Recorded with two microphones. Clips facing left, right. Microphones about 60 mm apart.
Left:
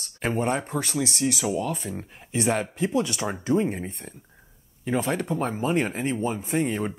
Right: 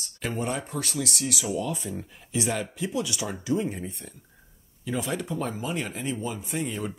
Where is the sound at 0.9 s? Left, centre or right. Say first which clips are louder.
Left 5 dB; left.